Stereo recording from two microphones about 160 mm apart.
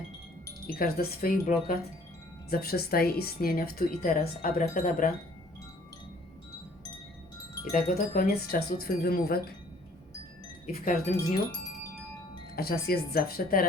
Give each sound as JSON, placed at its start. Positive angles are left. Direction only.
{"t": 0.7, "sound": "speech", "side_deg": 70}
{"t": 2.5, "sound": "speech", "side_deg": 75}
{"t": 4.6, "sound": "wind chime", "side_deg": 55}
{"t": 7.6, "sound": "speech", "side_deg": 60}
{"t": 10.7, "sound": "wind chime", "side_deg": 50}
{"t": 12.5, "sound": "speech", "side_deg": 75}